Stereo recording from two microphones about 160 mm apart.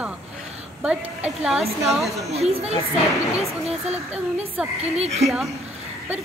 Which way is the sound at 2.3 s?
40° right (ahead or behind).